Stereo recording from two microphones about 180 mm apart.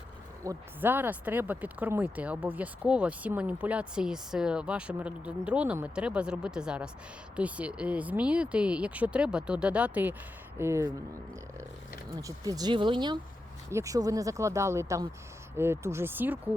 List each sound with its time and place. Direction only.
0.4 s speech: 10° right (ahead or behind)
12.4 s speech: 20° right (ahead or behind)